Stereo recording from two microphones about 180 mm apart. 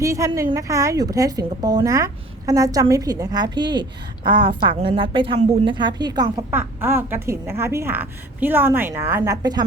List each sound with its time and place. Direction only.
0.0 s a woman's voice: 15° right (ahead or behind)
6.5 s a woman's voice: 10° right (ahead or behind)